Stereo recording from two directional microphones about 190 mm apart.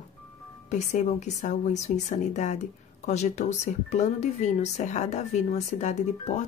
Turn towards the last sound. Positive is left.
turn(degrees=35)  # may be behind; listen again after turning